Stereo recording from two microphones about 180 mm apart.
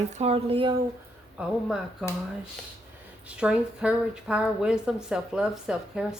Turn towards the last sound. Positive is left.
turn(degrees=-5)  # may be behind; listen again after turning